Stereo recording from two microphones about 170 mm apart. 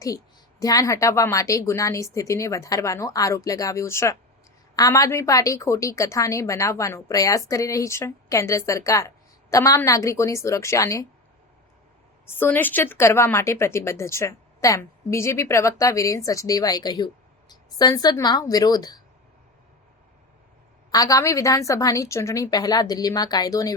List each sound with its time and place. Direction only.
0.6 s a woman's voice: 20° left (ahead or behind)
12.2 s a woman's voice: 15° left (ahead or behind)
20.9 s a woman's voice: 20° left (ahead or behind)